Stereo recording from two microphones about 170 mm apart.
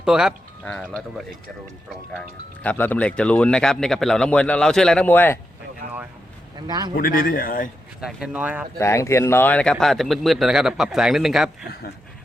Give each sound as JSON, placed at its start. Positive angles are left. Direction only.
{"t": 0.0, "sound": "speech", "side_deg": -5}
{"t": 2.6, "sound": "speech", "side_deg": 10}
{"t": 5.8, "sound": "a sound", "side_deg": -60}
{"t": 6.7, "sound": "speech", "side_deg": -25}
{"t": 7.2, "sound": "speech", "side_deg": 55}
{"t": 8.0, "sound": "speech", "side_deg": -5}
{"t": 8.8, "sound": "speech", "side_deg": 15}